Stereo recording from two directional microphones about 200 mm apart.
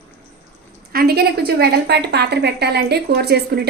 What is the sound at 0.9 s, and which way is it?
A woman's voice, 50° right (ahead or behind).